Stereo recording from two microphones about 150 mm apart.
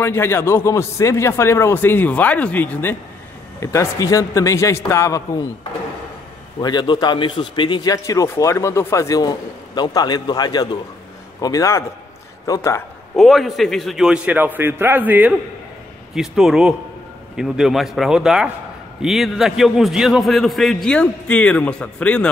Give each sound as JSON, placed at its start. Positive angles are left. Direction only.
{"t": 0.0, "sound": "a man's voice", "side_deg": 15}
{"t": 6.6, "sound": "a man's voice", "side_deg": 30}
{"t": 13.1, "sound": "a man's voice", "side_deg": 0}